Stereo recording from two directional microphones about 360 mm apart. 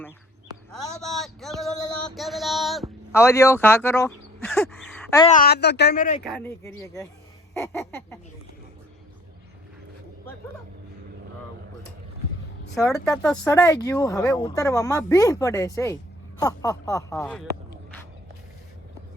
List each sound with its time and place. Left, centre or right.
0.7 s a sound: centre
5.2 s speech: left
6.2 s speech: centre
12.7 s speech: centre